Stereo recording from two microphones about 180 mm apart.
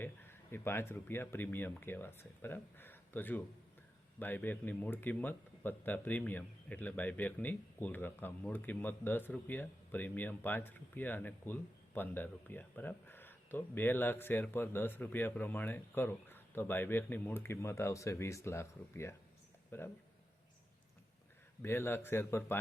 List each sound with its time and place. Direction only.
0.0 s a man's voice: 15° left (ahead or behind)
21.6 s a man's voice: 10° left (ahead or behind)